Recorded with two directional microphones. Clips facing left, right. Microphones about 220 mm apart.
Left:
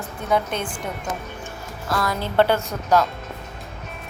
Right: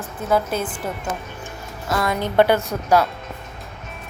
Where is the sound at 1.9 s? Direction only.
25° right (ahead or behind).